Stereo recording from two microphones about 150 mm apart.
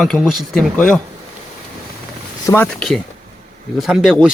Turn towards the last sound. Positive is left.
turn(degrees=-5)  # may be behind; listen again after turning